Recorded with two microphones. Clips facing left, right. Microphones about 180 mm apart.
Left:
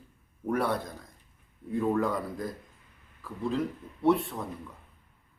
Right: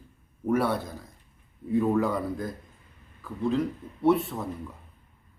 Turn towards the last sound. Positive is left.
turn(degrees=0)  # may be behind; listen again after turning